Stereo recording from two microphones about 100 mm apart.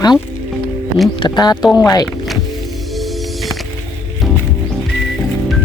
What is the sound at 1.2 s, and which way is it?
Speech, 45° left (ahead or behind).